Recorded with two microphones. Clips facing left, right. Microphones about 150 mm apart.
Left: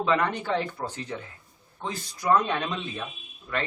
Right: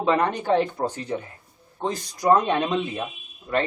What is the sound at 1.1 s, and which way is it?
Speech, 25° right (ahead or behind).